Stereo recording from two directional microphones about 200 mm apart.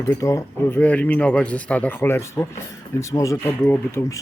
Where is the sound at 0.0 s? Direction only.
15° left (ahead or behind).